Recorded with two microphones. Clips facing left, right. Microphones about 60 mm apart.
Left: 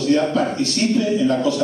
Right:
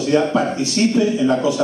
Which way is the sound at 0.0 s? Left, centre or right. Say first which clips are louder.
Right 1 dB; right.